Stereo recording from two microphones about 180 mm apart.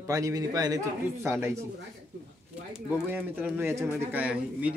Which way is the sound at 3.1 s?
5° right (ahead or behind).